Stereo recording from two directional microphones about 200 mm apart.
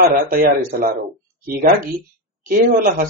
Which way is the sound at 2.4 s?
45° right (ahead or behind).